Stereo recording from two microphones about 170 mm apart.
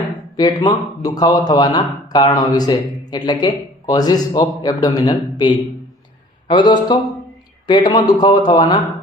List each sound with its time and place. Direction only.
0.3 s speech: 25° left (ahead or behind)